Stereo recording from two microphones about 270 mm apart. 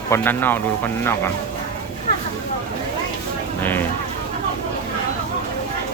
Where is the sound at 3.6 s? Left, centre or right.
Centre.